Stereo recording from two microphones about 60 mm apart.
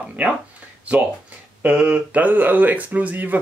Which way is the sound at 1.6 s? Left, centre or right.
Right.